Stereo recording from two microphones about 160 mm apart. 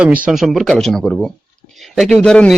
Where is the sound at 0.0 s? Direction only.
10° right (ahead or behind).